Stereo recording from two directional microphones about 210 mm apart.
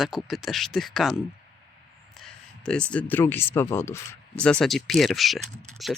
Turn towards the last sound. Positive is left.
turn(degrees=0)  # may be behind; listen again after turning